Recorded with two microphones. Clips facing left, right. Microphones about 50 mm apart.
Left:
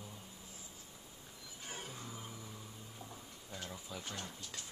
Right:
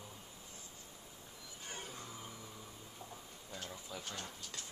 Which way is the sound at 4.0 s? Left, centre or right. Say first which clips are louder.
Left 1 dB; centre.